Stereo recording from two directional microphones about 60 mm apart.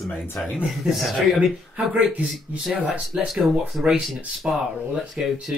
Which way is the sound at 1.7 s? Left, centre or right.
Right.